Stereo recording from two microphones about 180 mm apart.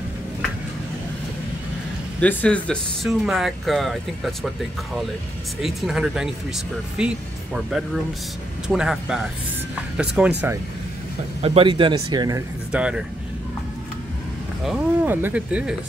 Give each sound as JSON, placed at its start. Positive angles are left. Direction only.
{"t": 2.1, "sound": "speech", "side_deg": 5}
{"t": 5.6, "sound": "speech", "side_deg": 0}
{"t": 11.4, "sound": "speech", "side_deg": -30}
{"t": 12.7, "sound": "speech", "side_deg": -5}
{"t": 14.6, "sound": "speech", "side_deg": -5}